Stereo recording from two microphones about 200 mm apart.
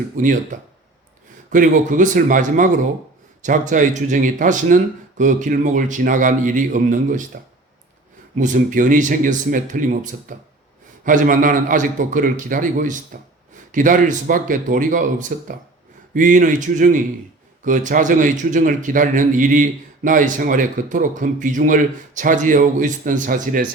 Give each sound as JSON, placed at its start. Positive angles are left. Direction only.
{"t": 0.2, "sound": "a man's voice", "side_deg": -40}
{"t": 1.5, "sound": "a man's voice", "side_deg": -40}
{"t": 8.4, "sound": "a man's voice", "side_deg": -40}